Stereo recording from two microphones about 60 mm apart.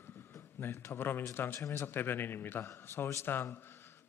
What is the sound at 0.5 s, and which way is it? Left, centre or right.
A man's voice, left.